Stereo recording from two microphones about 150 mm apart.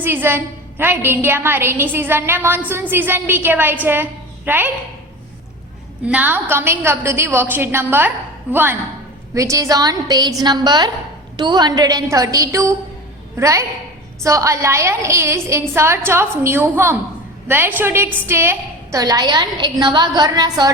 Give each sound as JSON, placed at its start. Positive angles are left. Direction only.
{"t": 0.0, "sound": "a woman's voice", "side_deg": -15}
{"t": 6.1, "sound": "a woman's voice", "side_deg": -10}